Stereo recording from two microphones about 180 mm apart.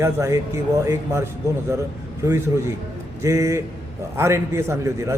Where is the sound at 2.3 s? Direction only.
15° right (ahead or behind).